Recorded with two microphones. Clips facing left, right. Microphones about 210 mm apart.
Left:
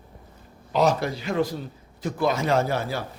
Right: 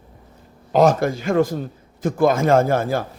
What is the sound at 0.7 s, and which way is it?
A man's voice, 50° right (ahead or behind).